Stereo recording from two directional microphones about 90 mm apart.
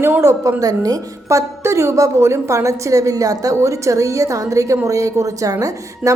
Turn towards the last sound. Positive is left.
turn(degrees=-40)  # may be behind; listen again after turning